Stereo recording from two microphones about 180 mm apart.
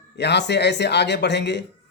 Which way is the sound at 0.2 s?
70° left (ahead or behind).